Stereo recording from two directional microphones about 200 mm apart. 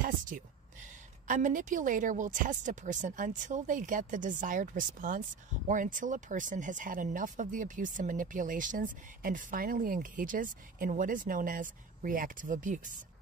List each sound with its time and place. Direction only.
1.2 s speech: 40° right (ahead or behind)